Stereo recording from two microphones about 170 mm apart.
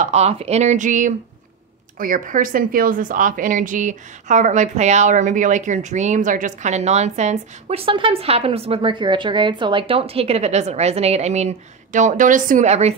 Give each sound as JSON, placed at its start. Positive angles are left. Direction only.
{"t": 0.0, "sound": "a woman's voice", "side_deg": -40}